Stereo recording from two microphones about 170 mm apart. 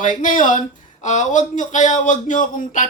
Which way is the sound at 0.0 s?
50° left (ahead or behind).